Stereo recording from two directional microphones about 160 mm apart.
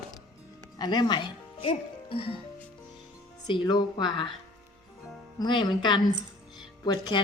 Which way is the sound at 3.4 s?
25° left (ahead or behind).